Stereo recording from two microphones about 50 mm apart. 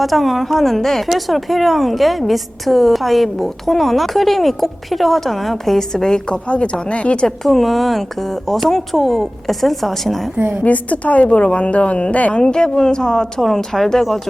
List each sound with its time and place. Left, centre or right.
0.0 s a woman's voice: centre; by 7.3 s left
7.3 s a woman's voice: centre
10.3 s a woman's voice: right
10.6 s a woman's voice: left
12.4 s a woman's voice: centre